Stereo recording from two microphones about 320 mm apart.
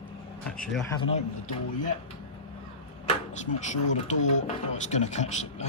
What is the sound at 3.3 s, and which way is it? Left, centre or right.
Speech, left.